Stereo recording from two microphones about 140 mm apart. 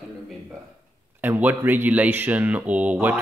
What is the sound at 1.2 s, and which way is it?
Speech, 10° right (ahead or behind).